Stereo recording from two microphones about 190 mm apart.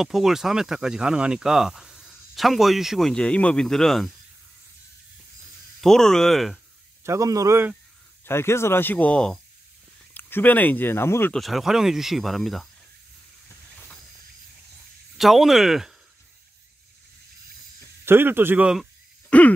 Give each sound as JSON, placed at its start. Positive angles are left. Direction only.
{"t": 0.0, "sound": "speech", "side_deg": 0}
{"t": 5.8, "sound": "speech", "side_deg": 0}
{"t": 7.0, "sound": "speech", "side_deg": -15}
{"t": 8.3, "sound": "speech", "side_deg": 15}
{"t": 11.3, "sound": "speech", "side_deg": 0}
{"t": 15.1, "sound": "speech", "side_deg": 0}
{"t": 18.0, "sound": "speech", "side_deg": -10}
{"t": 19.3, "sound": "throat clearing", "side_deg": 5}